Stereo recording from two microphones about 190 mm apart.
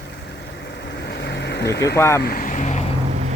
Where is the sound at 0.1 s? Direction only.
60° left (ahead or behind).